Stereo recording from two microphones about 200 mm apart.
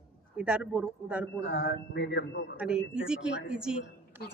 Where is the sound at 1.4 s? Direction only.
60° left (ahead or behind).